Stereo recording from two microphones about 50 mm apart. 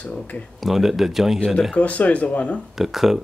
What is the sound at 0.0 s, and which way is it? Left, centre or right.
Speech, left.